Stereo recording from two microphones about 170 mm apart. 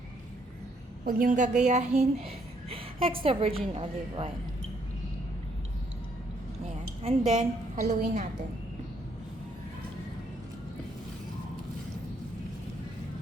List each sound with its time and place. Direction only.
1.0 s a woman's voice: 50° right (ahead or behind); by 4.3 s 35° right (ahead or behind)
7.0 s a woman's voice: 45° right (ahead or behind)